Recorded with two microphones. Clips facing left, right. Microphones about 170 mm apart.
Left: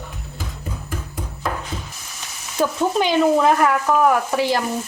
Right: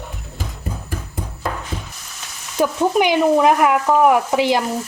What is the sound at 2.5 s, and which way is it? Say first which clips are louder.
Speech: right 3 dB; 15° right (ahead or behind).